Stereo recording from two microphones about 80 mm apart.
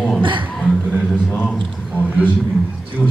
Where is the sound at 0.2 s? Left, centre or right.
Right.